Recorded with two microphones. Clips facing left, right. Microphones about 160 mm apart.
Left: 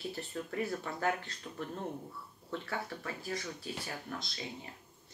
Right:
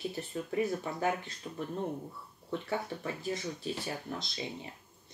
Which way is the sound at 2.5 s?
20° right (ahead or behind).